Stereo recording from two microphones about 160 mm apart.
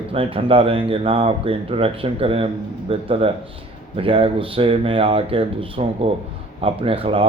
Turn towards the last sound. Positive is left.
turn(degrees=-35)  # may be behind; listen again after turning